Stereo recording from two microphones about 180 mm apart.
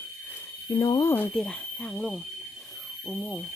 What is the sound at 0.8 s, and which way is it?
Speech, 20° left (ahead or behind).